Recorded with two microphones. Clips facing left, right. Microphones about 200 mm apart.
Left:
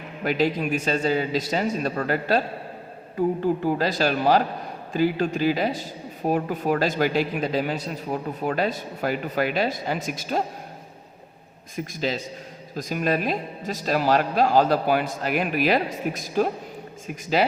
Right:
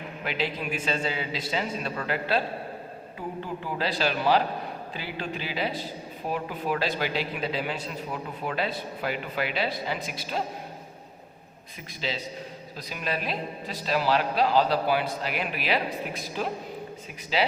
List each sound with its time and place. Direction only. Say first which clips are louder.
0.3 s speech: left 8 dB; 45° left (ahead or behind)
11.9 s speech: left 4 dB; 45° left (ahead or behind)